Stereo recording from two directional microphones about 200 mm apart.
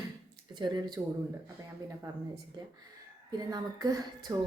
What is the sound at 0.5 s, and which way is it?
Speech, 20° right (ahead or behind).